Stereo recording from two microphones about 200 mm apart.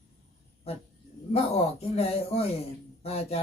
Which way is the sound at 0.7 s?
30° left (ahead or behind).